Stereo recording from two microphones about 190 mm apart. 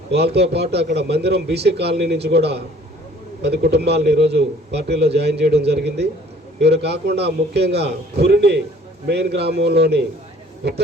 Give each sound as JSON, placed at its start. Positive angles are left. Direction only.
{"t": 0.1, "sound": "a man's voice", "side_deg": -60}